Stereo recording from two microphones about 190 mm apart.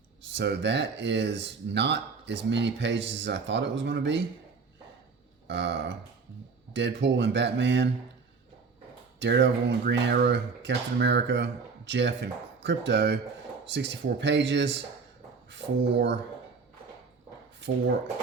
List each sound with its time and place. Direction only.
0.3 s speech: 65° right (ahead or behind)
5.5 s burping: 65° right (ahead or behind)
6.7 s speech: 65° right (ahead or behind)
9.1 s speech: 65° right (ahead or behind)